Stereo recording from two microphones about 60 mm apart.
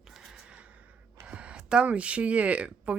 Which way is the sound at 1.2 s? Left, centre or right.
Centre.